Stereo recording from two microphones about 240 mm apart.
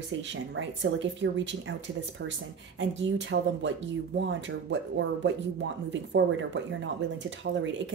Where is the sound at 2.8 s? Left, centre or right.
Right.